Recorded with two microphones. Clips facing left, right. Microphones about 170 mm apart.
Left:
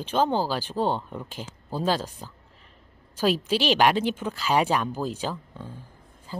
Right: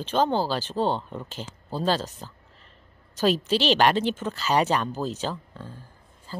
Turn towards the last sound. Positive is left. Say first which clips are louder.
# left 1 dB
turn(degrees=15)  # may be behind; listen again after turning